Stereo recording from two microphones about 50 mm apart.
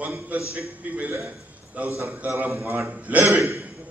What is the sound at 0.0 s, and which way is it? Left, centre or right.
Speech, right.